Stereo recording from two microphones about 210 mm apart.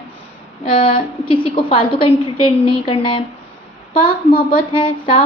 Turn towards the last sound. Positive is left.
turn(degrees=25)  # may be behind; listen again after turning